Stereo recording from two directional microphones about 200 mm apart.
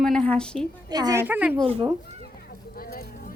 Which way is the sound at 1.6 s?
30° right (ahead or behind).